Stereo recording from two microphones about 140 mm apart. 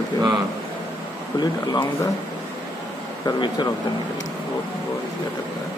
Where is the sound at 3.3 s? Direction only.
30° left (ahead or behind).